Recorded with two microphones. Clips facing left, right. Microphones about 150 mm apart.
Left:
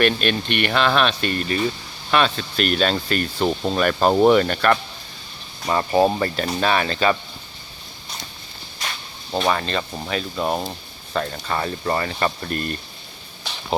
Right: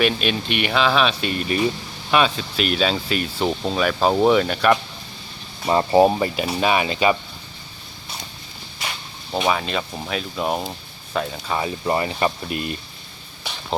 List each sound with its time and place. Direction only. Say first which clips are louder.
0.0 s speech: left 1 dB; 5° right (ahead or behind)
5.6 s speech: right 3 dB; 25° right (ahead or behind)
6.1 s speech: right 1 dB; 10° right (ahead or behind)
9.3 s speech: even; 5° right (ahead or behind)